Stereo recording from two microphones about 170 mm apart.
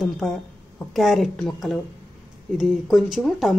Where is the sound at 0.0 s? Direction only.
Centre (ahead or behind).